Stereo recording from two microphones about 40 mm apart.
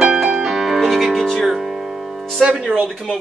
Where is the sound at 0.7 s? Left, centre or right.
Centre.